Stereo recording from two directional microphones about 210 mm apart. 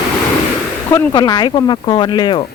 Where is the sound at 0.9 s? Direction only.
20° left (ahead or behind).